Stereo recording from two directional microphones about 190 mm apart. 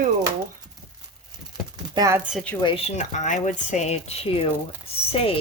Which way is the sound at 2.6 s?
30° left (ahead or behind).